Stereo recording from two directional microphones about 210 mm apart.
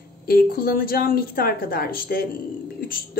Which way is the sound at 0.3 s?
45° left (ahead or behind).